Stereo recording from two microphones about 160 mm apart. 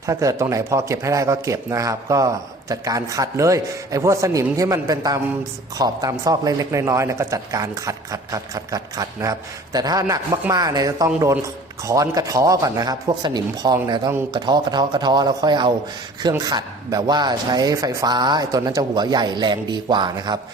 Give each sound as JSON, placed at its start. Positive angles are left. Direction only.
{"t": 0.0, "sound": "speech", "side_deg": -20}